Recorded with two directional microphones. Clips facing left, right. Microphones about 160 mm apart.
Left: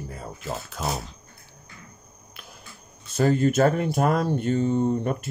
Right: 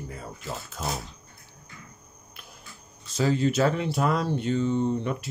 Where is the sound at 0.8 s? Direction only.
70° left (ahead or behind).